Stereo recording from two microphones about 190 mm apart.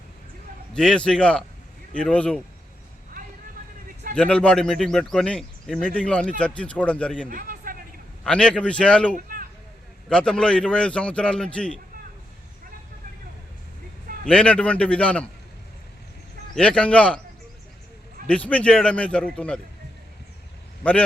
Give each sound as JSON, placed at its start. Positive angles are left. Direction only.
{"t": 0.7, "sound": "speech", "side_deg": 5}
{"t": 4.1, "sound": "a man's voice", "side_deg": 5}
{"t": 7.3, "sound": "a sound", "side_deg": -45}
{"t": 8.2, "sound": "speech", "side_deg": 5}
{"t": 9.1, "sound": "a sound", "side_deg": -50}
{"t": 10.1, "sound": "speech", "side_deg": 5}
{"t": 14.3, "sound": "a man's voice", "side_deg": 5}
{"t": 16.6, "sound": "speech", "side_deg": 5}
{"t": 18.3, "sound": "a man's voice", "side_deg": 5}